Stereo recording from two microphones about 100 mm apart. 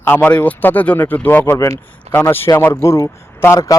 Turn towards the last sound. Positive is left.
turn(degrees=25)  # may be behind; listen again after turning